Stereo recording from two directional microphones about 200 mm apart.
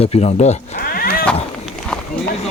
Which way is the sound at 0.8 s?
45° left (ahead or behind).